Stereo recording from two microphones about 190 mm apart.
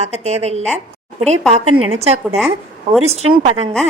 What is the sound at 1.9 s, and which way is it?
A woman's voice, 35° right (ahead or behind).